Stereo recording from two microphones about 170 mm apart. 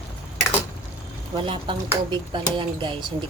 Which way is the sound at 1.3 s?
30° right (ahead or behind).